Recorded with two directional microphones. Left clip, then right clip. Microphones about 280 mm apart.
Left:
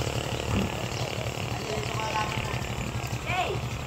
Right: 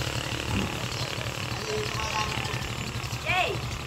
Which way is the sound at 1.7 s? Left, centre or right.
Left.